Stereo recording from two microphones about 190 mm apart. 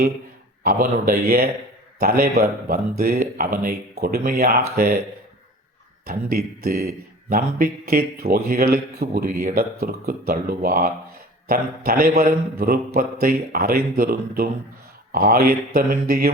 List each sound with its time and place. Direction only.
0.6 s speech: 50° right (ahead or behind)
6.1 s speech: 55° right (ahead or behind)